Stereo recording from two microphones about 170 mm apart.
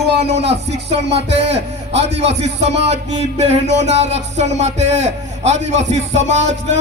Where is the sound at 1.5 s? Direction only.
35° right (ahead or behind).